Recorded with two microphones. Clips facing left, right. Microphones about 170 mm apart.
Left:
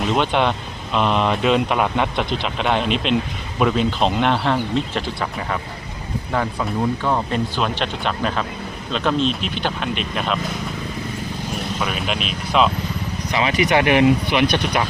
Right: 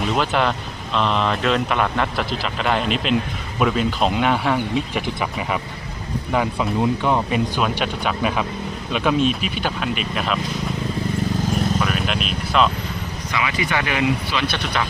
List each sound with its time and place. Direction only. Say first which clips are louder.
0.0 s speech: left 1 dB; centre (ahead or behind)
11.8 s speech: right 1 dB; centre (ahead or behind)
13.3 s speech: left 5 dB; 20° left (ahead or behind)